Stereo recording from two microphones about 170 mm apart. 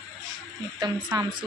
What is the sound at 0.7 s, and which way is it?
Speech, 25° right (ahead or behind).